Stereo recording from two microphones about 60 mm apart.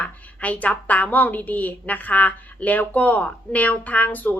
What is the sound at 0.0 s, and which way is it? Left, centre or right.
A woman's voice, left.